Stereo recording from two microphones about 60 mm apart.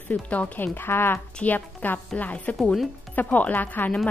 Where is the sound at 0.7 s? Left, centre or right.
Left.